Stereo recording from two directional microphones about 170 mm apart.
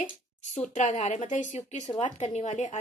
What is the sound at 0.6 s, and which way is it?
A woman's voice, 40° left (ahead or behind).